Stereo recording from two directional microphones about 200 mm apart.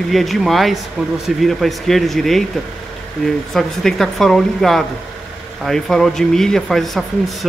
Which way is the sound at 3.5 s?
Centre (ahead or behind).